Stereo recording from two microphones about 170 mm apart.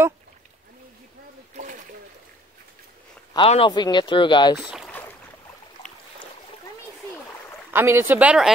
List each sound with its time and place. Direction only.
3.3 s speech: 30° left (ahead or behind)
4.6 s boat: 5° right (ahead or behind)
7.7 s speech: 15° right (ahead or behind)